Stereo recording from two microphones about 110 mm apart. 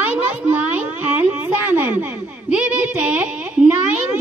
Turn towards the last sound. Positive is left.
turn(degrees=-10)  # may be behind; listen again after turning